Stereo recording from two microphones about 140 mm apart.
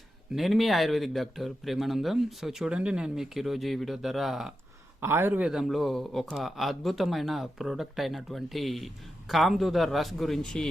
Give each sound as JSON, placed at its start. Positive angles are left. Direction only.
{"t": 0.3, "sound": "speech", "side_deg": 0}
{"t": 4.9, "sound": "a man's voice", "side_deg": -15}
{"t": 5.5, "sound": "speech", "side_deg": 0}